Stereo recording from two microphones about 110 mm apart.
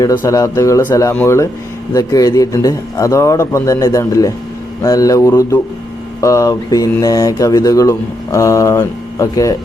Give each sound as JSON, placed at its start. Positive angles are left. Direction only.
{"t": 0.3, "sound": "speech", "side_deg": 30}
{"t": 1.9, "sound": "a man's voice", "side_deg": 35}